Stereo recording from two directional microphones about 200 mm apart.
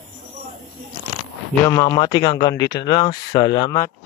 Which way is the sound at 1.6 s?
15° left (ahead or behind).